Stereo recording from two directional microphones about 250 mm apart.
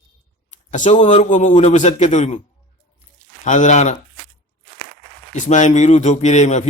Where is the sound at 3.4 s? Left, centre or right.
Left.